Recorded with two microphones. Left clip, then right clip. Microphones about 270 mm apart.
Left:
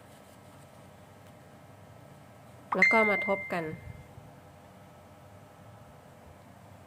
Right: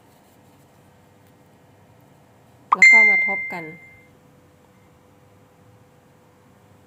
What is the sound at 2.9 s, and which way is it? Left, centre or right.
Speech, centre.